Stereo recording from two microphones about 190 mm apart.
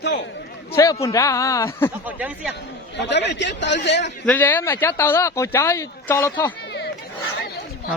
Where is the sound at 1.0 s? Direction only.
15° left (ahead or behind).